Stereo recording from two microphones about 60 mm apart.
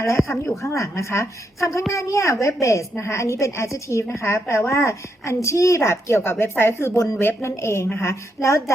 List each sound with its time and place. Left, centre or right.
0.3 s a woman's voice: left